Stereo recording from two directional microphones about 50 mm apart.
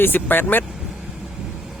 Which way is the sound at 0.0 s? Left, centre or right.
Left.